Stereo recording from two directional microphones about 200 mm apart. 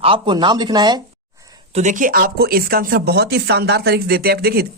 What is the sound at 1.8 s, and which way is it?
Speech, 40° right (ahead or behind).